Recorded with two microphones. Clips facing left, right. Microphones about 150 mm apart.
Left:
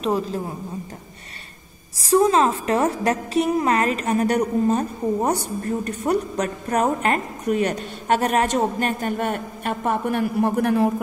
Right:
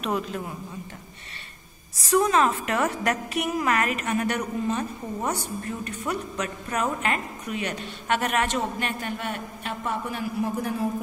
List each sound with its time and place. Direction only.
0.0 s a woman's voice: 30° left (ahead or behind)
2.0 s a woman's voice: 30° left (ahead or behind); by 10.9 s 70° left (ahead or behind)